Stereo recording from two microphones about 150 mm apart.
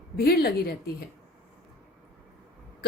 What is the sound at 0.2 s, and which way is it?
Speech, 90° left.